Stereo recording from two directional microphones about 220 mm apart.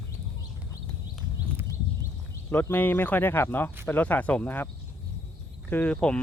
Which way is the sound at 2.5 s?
10° left (ahead or behind).